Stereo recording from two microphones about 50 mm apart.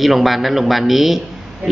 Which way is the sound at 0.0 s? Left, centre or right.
Centre.